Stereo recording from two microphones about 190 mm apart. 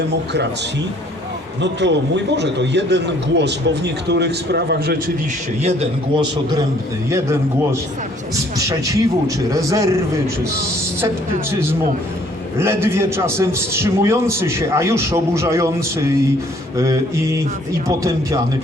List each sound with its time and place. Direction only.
1.6 s a man's voice: 65° right (ahead or behind)
7.1 s a man's voice: 15° right (ahead or behind)
12.5 s a man's voice: 15° right (ahead or behind)